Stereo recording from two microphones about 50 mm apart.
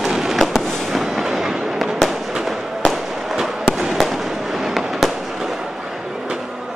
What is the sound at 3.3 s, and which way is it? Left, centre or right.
Fireworks, centre.